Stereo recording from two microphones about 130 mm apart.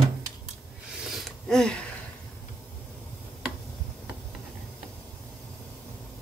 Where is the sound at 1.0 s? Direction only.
Centre (ahead or behind).